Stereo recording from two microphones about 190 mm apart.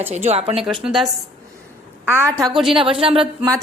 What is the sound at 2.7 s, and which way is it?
Speech, 25° right (ahead or behind).